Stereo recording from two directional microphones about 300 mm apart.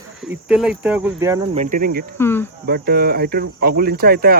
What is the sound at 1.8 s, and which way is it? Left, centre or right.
Insect, right.